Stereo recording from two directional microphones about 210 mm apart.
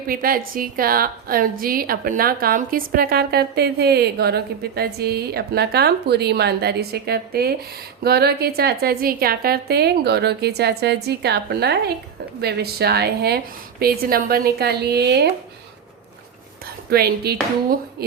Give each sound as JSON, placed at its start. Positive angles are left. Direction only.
{"t": 0.1, "sound": "a woman's voice", "side_deg": -45}
{"t": 16.9, "sound": "a woman's voice", "side_deg": -45}